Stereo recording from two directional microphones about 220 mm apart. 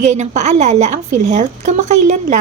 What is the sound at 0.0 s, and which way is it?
A woman's voice, 30° right (ahead or behind).